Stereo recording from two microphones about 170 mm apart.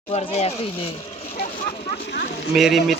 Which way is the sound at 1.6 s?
60° left (ahead or behind).